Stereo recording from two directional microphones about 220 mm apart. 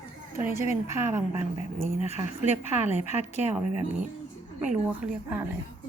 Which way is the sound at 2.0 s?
30° left (ahead or behind).